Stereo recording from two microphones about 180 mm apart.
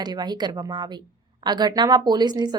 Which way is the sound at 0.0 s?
25° right (ahead or behind).